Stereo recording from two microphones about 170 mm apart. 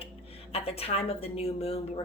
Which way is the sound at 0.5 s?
35° left (ahead or behind).